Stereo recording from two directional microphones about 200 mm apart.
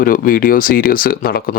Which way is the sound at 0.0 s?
45° left (ahead or behind).